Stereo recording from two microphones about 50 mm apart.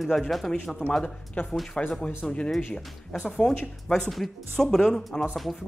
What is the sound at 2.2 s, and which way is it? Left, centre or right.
Speech, centre.